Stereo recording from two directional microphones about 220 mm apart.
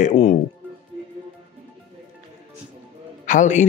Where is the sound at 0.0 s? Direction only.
30° left (ahead or behind).